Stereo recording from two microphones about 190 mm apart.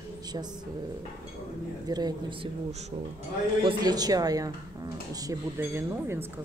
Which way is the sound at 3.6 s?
20° right (ahead or behind).